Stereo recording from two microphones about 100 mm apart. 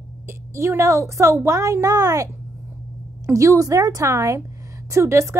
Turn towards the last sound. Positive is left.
turn(degrees=-30)  # may be behind; listen again after turning